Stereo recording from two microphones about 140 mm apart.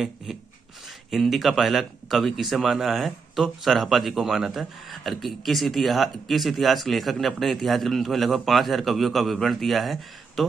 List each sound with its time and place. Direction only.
0.3 s rub: centre (ahead or behind)
1.1 s speech: centre (ahead or behind)